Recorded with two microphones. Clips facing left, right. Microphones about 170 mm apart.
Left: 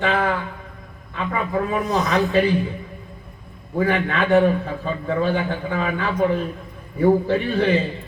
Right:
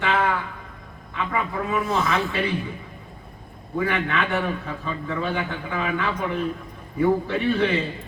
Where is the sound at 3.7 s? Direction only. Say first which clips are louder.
Left 4 dB; 40° left (ahead or behind).